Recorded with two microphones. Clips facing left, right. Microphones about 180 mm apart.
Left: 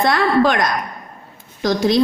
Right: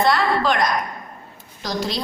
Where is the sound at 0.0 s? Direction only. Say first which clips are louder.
Left 4 dB; 55° left (ahead or behind).